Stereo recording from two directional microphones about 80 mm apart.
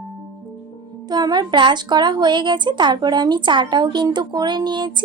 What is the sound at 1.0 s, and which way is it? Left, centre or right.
A woman's voice, right.